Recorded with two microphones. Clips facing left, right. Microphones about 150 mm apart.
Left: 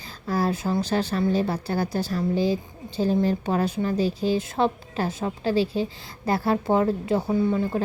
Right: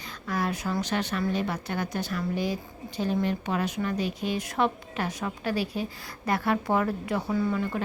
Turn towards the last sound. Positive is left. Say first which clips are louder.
# left 4 dB
turn(degrees=30)  # may be behind; listen again after turning